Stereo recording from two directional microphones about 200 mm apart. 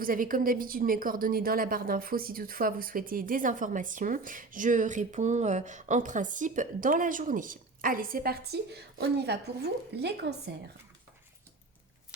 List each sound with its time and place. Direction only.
0.0 s a woman's voice: 45° right (ahead or behind)